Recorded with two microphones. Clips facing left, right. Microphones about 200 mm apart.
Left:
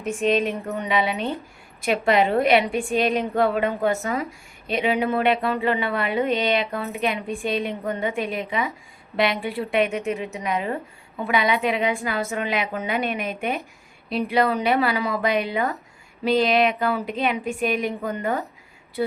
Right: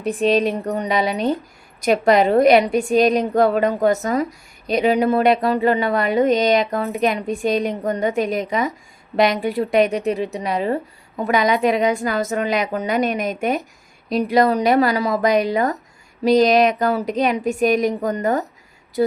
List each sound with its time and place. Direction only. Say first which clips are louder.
0.0 s a woman's voice: right 4 dB; 35° right (ahead or behind)